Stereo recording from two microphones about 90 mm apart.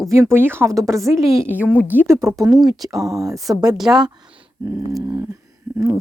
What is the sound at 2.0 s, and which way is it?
Speech, 35° right (ahead or behind).